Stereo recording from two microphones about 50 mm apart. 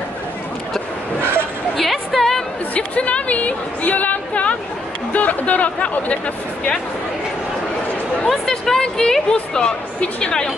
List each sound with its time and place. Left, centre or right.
1.8 s music: centre
2.7 s a sound: left
5.1 s speech: left
8.3 s a woman's voice: centre